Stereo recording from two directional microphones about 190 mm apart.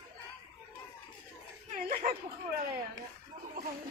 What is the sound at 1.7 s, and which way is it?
Chuckle, 50° right (ahead or behind).